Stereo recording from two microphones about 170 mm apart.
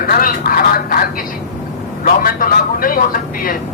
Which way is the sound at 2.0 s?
55° left (ahead or behind).